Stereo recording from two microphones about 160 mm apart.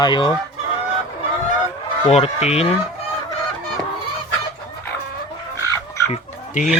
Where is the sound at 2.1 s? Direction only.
40° left (ahead or behind).